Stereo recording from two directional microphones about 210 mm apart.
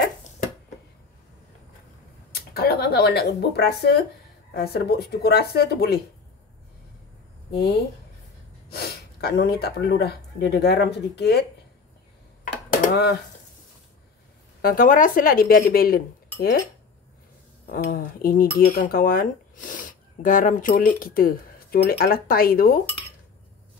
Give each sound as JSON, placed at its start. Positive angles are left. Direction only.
{"t": 2.3, "sound": "speech", "side_deg": 50}
{"t": 8.6, "sound": "speech", "side_deg": 50}
{"t": 12.8, "sound": "speech", "side_deg": 50}
{"t": 14.6, "sound": "speech", "side_deg": 40}
{"t": 17.6, "sound": "speech", "side_deg": 45}